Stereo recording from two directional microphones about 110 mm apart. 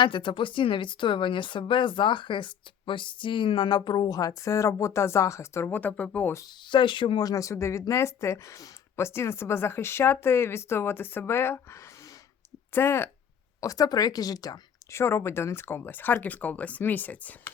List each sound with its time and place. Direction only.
0.0 s a woman's voice: 45° left (ahead or behind); by 6.3 s 15° left (ahead or behind)
6.7 s speech: 45° left (ahead or behind); by 13.1 s 20° left (ahead or behind)
13.6 s speech: 35° left (ahead or behind); by 17.5 s 15° left (ahead or behind)